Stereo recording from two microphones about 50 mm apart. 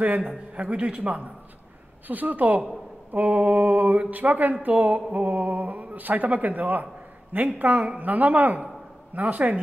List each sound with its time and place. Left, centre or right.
0.0 s speech: right
0.6 s speech: right
2.0 s speech: right